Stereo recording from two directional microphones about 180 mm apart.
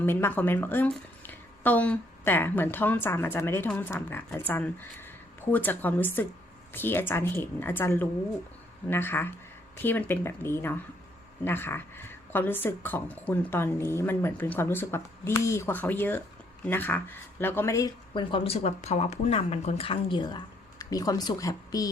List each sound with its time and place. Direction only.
0.0 s speech: 10° left (ahead or behind)